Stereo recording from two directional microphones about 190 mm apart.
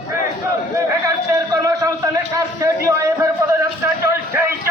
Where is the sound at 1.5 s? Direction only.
15° right (ahead or behind).